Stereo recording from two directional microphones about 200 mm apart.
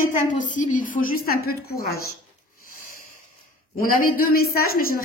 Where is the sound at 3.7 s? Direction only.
45° left (ahead or behind).